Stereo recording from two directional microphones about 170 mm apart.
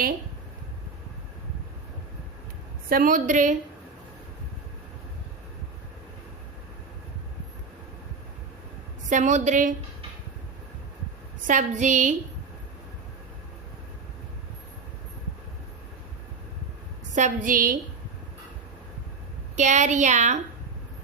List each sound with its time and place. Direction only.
2.9 s a woman's voice: 50° right (ahead or behind)
9.0 s a woman's voice: 45° right (ahead or behind)
11.4 s a woman's voice: 45° right (ahead or behind)
17.2 s a woman's voice: 50° right (ahead or behind)
19.5 s a woman's voice: 45° right (ahead or behind)